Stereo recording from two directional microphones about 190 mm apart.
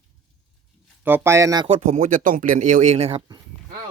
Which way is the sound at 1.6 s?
40° right (ahead or behind).